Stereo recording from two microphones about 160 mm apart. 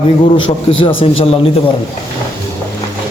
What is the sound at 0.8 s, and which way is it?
Speech, 35° left (ahead or behind).